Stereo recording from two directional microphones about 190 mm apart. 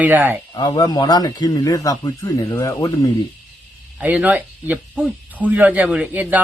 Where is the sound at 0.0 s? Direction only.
10° right (ahead or behind).